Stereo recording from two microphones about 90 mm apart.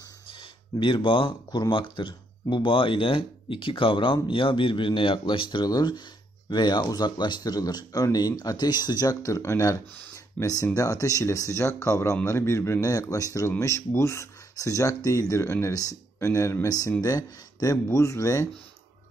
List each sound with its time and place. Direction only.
0.3 s speech: 65° left (ahead or behind); by 18.5 s 35° left (ahead or behind)